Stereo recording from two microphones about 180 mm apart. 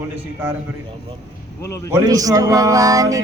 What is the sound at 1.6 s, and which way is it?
Speech, 15° left (ahead or behind).